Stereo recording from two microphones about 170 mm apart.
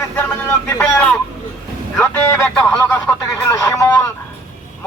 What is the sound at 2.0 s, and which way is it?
Speech, 15° left (ahead or behind).